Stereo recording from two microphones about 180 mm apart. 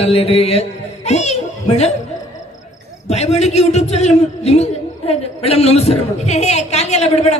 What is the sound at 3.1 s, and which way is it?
A man's voice, 35° left (ahead or behind).